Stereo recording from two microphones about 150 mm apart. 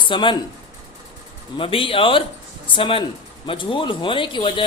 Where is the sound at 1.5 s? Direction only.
35° left (ahead or behind).